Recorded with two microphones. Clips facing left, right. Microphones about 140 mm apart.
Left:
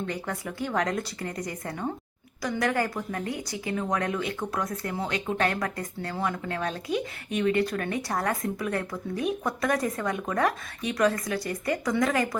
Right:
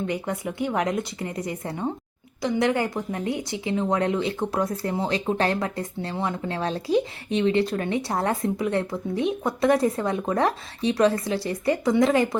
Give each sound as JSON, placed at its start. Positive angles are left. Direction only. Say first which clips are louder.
{"t": 0.1, "sound": "speech", "louder": "right 5 dB", "side_deg": -20}